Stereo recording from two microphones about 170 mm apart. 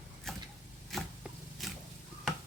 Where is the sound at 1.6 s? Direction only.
Centre (ahead or behind).